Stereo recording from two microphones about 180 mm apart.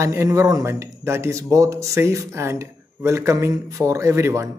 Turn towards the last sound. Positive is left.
turn(degrees=-15)  # may be behind; listen again after turning